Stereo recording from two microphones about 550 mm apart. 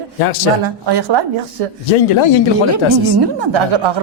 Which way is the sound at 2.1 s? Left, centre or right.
Left.